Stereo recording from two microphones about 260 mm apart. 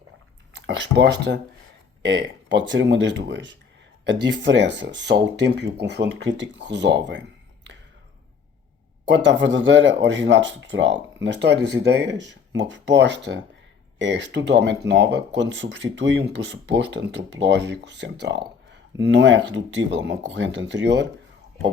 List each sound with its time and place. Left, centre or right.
0.5 s speech: right
9.0 s speech: right